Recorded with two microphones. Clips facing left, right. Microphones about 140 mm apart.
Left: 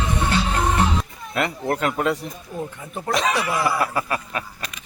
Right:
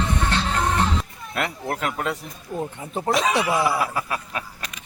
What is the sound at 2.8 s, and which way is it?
Speech, 30° right (ahead or behind).